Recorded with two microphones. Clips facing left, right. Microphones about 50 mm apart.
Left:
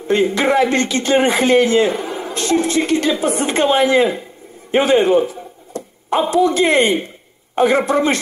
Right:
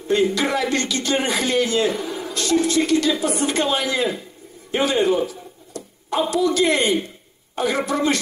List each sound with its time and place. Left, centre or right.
0.1 s speech: left